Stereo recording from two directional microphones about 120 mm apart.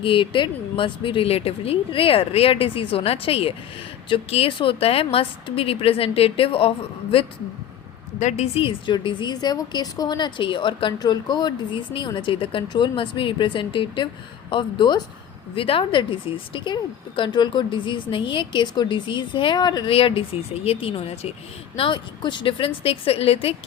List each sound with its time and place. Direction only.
0.0 s a woman's voice: 45° left (ahead or behind)
8.2 s a woman's voice: 65° left (ahead or behind); by 19.9 s 35° left (ahead or behind)
19.9 s a woman's voice: 50° left (ahead or behind)
21.8 s a woman's voice: 40° left (ahead or behind)